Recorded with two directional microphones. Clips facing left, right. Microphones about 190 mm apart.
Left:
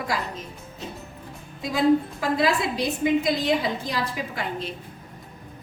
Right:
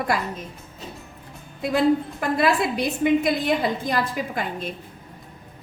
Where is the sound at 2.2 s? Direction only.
60° right (ahead or behind).